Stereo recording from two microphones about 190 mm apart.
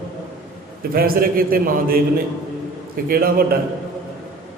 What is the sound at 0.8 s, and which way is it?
A man's voice, 50° right (ahead or behind).